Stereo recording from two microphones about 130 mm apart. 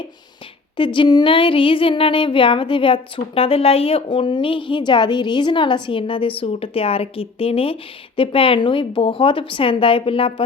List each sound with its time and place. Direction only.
0.9 s speech: 35° left (ahead or behind)